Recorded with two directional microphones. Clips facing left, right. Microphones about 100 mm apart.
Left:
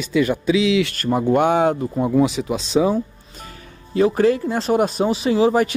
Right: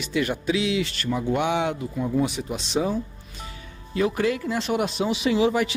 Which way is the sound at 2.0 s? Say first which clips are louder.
Left 7 dB; 80° left.